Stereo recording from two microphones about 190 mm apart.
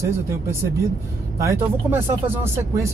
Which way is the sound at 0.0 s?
15° right (ahead or behind).